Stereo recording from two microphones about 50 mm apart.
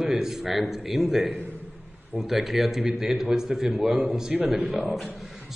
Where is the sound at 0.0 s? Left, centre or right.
Centre.